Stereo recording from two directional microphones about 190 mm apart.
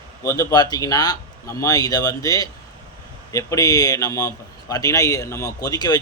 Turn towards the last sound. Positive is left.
turn(degrees=20)  # may be behind; listen again after turning